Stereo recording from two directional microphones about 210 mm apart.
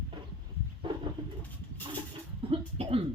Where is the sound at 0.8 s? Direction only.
25° right (ahead or behind).